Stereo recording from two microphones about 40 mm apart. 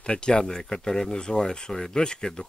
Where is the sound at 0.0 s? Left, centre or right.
Left.